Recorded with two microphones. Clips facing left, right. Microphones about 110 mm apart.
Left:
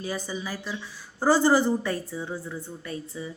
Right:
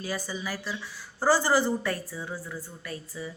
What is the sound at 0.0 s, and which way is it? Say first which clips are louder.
A woman's voice: left 1 dB; 20° left (ahead or behind).